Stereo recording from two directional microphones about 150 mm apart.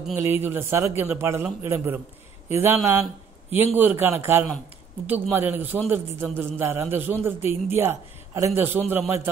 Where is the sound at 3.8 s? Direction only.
15° right (ahead or behind).